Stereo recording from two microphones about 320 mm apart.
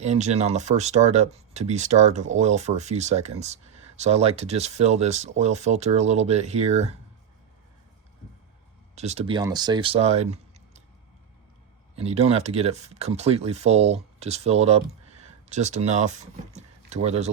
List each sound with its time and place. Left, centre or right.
0.0 s speech: right
9.0 s speech: centre
11.9 s speech: centre